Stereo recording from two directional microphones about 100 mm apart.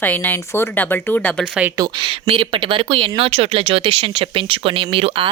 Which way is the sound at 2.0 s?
65° right (ahead or behind).